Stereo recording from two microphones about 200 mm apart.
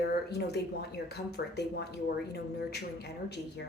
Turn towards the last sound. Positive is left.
turn(degrees=55)  # may be behind; listen again after turning